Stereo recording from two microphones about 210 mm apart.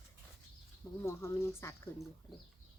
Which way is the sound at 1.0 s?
15° left (ahead or behind).